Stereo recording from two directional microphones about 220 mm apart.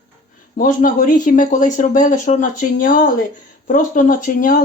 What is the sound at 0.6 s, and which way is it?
Speech, 40° left (ahead or behind).